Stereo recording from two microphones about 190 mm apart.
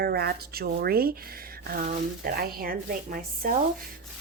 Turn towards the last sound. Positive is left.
turn(degrees=-50)  # may be behind; listen again after turning